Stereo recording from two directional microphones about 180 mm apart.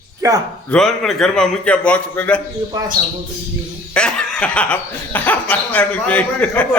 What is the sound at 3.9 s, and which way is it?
Chuckle, 5° left (ahead or behind).